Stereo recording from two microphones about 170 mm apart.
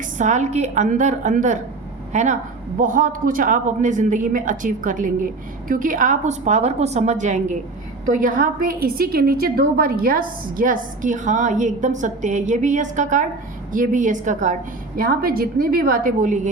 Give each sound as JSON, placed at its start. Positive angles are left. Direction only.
{"t": 0.2, "sound": "a woman's voice", "side_deg": -45}
{"t": 14.9, "sound": "a woman's voice", "side_deg": -60}